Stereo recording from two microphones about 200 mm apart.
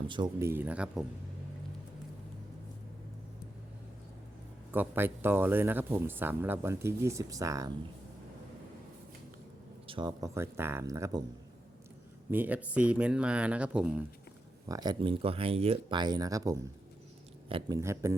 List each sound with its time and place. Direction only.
0.1 s speech: 20° right (ahead or behind)
4.7 s speech: 10° right (ahead or behind)
9.8 s speech: 25° right (ahead or behind)
12.3 s speech: 10° right (ahead or behind)
14.7 s speech: 20° right (ahead or behind)